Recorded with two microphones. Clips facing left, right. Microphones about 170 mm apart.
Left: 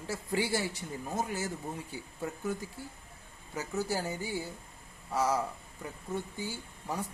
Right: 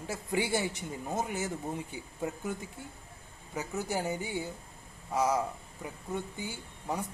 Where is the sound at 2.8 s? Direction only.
20° right (ahead or behind).